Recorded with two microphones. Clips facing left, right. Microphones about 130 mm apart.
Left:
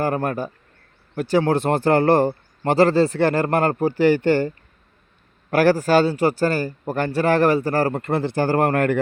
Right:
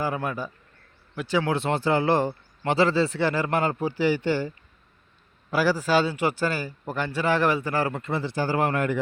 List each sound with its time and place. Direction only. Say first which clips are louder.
0.0 s a man's voice: left 6 dB; 50° left (ahead or behind)
8.0 s speech: left 6 dB; 55° left (ahead or behind)